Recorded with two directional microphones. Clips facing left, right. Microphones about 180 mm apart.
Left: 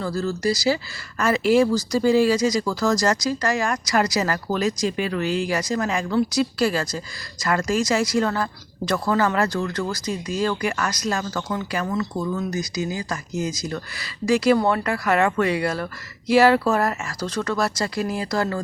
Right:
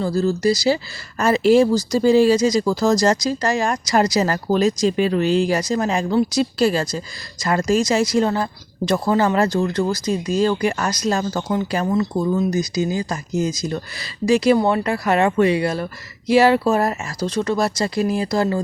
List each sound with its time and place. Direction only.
0.0 s speech: 25° right (ahead or behind)